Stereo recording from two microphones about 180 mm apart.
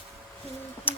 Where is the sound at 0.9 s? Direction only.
10° left (ahead or behind).